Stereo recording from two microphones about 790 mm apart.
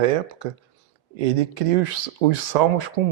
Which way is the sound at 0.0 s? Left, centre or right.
Right.